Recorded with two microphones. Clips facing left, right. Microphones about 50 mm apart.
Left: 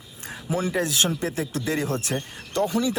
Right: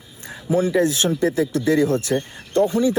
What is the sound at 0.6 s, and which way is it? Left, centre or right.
Speech, left.